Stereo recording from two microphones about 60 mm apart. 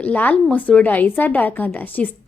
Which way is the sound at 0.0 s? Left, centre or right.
Left.